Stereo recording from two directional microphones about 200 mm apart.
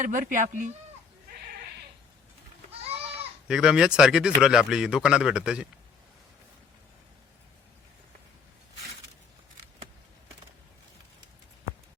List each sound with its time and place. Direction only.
0.0 s speech: 40° right (ahead or behind)
3.4 s speech: 5° right (ahead or behind)